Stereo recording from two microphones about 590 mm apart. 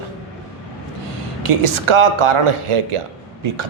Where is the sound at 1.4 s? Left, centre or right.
Right.